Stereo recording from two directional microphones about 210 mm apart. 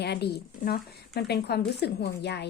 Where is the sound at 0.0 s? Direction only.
50° left (ahead or behind).